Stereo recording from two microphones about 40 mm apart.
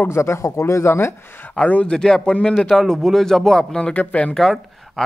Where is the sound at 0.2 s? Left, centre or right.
Left.